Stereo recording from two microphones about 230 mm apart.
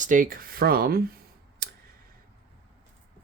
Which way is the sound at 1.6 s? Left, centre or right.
Right.